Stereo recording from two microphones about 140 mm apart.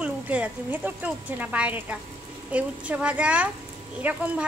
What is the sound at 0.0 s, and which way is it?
Speech, 10° right (ahead or behind).